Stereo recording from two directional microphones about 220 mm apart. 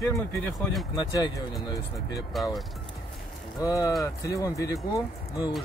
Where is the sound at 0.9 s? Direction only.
15° left (ahead or behind).